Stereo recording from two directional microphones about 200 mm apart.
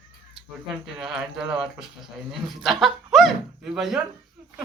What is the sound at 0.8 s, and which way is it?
Speech, centre (ahead or behind).